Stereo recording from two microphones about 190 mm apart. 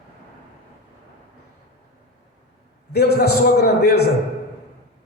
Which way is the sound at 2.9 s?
55° left (ahead or behind).